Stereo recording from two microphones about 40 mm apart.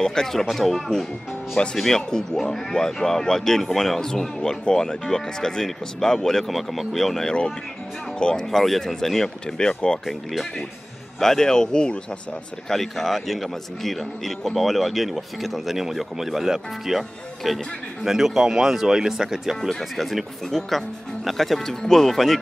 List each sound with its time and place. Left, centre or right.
0.0 s speech: centre
1.8 s speech: centre
8.5 s speech: centre
9.6 s speech: left
11.1 s speech: centre
12.6 s speech: centre
19.7 s speech: centre